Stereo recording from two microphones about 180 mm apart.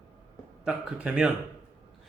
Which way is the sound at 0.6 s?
5° right (ahead or behind).